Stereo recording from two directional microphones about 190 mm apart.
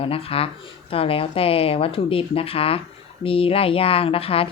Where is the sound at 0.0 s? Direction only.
30° left (ahead or behind).